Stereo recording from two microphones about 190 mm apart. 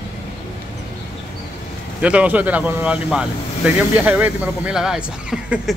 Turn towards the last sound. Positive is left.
turn(degrees=-5)  # may be behind; listen again after turning